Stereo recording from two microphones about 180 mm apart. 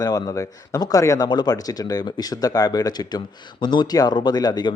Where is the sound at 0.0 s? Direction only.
20° left (ahead or behind).